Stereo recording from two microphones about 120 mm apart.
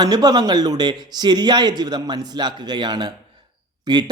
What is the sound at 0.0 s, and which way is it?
Speech, 35° right (ahead or behind).